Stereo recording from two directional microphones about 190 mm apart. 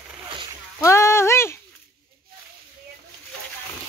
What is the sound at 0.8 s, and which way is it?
Speech, 15° left (ahead or behind).